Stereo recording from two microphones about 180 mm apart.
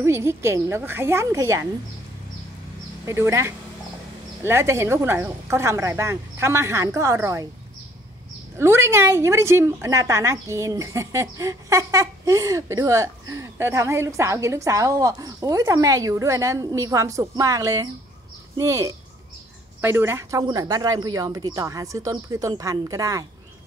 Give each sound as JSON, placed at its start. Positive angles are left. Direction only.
{"t": 0.0, "sound": "a woman's voice", "side_deg": -15}
{"t": 3.1, "sound": "a woman's voice", "side_deg": -15}
{"t": 8.5, "sound": "a woman's voice", "side_deg": -15}